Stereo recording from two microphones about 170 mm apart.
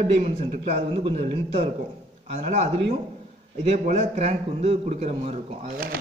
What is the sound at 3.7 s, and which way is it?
A man's voice, 40° right (ahead or behind).